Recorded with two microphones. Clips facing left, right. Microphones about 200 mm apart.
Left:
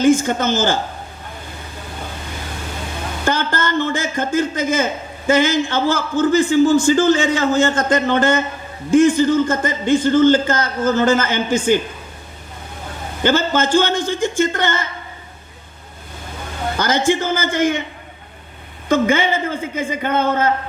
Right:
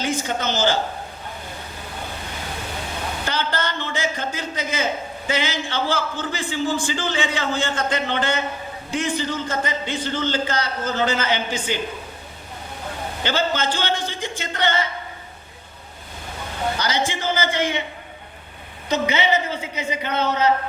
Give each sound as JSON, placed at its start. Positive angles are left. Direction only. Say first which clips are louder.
{"t": 0.0, "sound": "a man's voice", "louder": "left 10 dB", "side_deg": 45}
{"t": 3.2, "sound": "a man's voice", "louder": "left 7 dB", "side_deg": 50}
{"t": 13.2, "sound": "a man's voice", "louder": "left 6 dB", "side_deg": 50}
{"t": 16.7, "sound": "a man's voice", "louder": "left 12 dB", "side_deg": 50}
{"t": 18.9, "sound": "a man's voice", "louder": "left 5 dB", "side_deg": 50}